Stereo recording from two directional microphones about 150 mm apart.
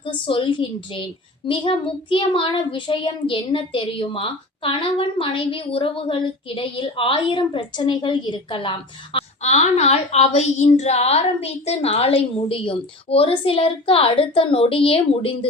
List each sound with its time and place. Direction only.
0.0 s a child's voice: 35° left (ahead or behind)
9.1 s a woman's voice: 50° left (ahead or behind)